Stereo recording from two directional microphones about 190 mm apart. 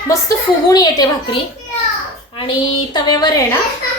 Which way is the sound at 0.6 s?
20° left (ahead or behind).